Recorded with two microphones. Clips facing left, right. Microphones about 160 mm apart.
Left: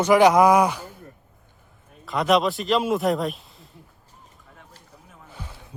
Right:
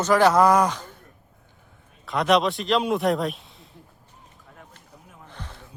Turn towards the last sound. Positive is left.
turn(degrees=10)  # may be behind; listen again after turning